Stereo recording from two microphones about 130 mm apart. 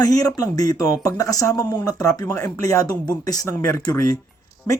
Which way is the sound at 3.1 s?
25° left (ahead or behind).